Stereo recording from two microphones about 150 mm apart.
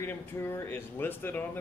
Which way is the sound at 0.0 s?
15° left (ahead or behind).